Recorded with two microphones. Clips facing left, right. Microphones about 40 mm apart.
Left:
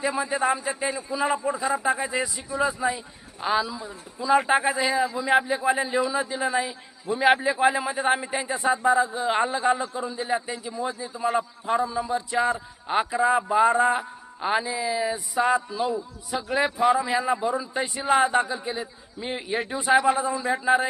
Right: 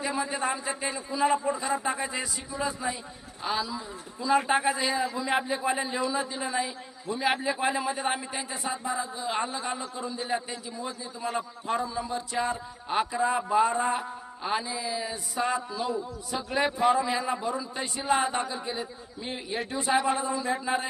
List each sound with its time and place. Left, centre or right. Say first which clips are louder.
0.0 s a man's voice: left 5 dB; centre; by 9.9 s left
9.9 s a man's voice: left 4 dB; centre
19.2 s a man's voice: left 5 dB; centre